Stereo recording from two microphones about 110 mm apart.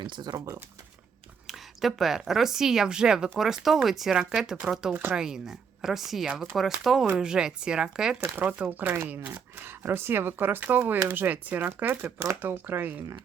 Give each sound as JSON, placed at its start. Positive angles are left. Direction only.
{"t": 0.0, "sound": "speech", "side_deg": -40}
{"t": 1.5, "sound": "speech", "side_deg": 0}